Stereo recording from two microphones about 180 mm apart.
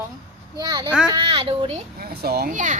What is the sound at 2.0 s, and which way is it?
Speech, 60° right (ahead or behind).